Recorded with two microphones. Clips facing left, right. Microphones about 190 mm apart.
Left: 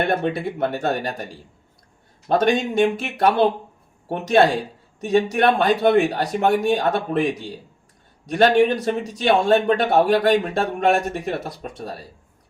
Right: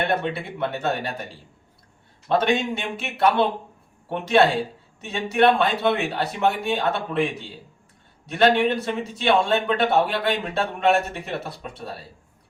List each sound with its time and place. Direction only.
0.0 s a man's voice: 50° left (ahead or behind)
2.3 s a man's voice: 45° left (ahead or behind)
8.3 s a man's voice: 45° left (ahead or behind)